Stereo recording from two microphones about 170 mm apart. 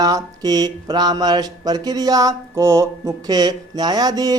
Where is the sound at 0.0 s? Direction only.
20° right (ahead or behind).